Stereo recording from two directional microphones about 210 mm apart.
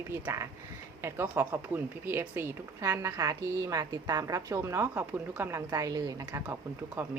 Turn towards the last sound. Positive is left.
turn(degrees=-10)  # may be behind; listen again after turning